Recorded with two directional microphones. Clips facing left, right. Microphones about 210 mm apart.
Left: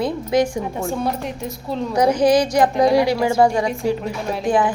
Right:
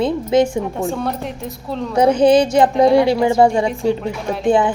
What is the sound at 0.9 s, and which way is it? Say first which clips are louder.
Speech: right 1 dB; centre (ahead or behind).